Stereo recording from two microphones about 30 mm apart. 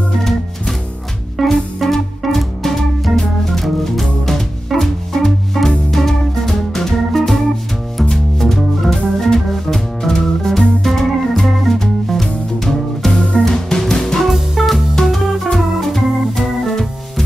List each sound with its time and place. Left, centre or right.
1.5 s music: centre
2.3 s organ: centre
3.8 s music: centre
7.1 s organ: centre
8.0 s music: centre
8.9 s organ: centre
11.8 s music: centre
13.1 s music: left
13.4 s music: centre
14.2 s music: centre
15.0 s organ: centre